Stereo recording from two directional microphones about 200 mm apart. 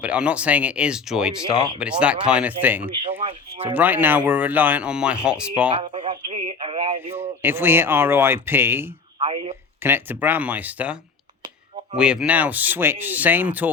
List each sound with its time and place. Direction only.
0.0 s speech: 5° right (ahead or behind)
5.7 s radio: 25° right (ahead or behind)
7.2 s speech: 10° right (ahead or behind)
9.1 s speech: 25° right (ahead or behind)
9.8 s speech: 10° right (ahead or behind)
11.9 s speech: 5° right (ahead or behind)